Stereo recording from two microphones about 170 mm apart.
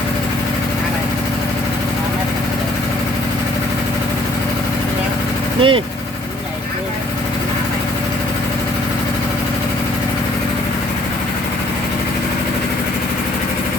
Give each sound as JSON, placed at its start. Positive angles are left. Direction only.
{"t": 5.5, "sound": "speech", "side_deg": -30}